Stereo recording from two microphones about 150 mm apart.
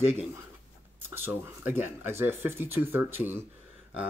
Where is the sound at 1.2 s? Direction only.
15° right (ahead or behind).